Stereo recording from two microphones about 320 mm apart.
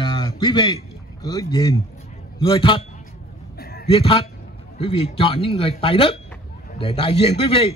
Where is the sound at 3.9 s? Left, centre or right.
Centre.